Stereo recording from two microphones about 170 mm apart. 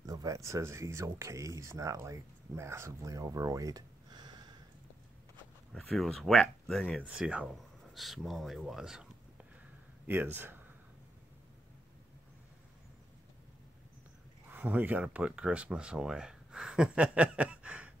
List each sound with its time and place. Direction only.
0.0 s speech: 20° right (ahead or behind)
5.7 s speech: centre (ahead or behind)
14.5 s speech: 10° right (ahead or behind)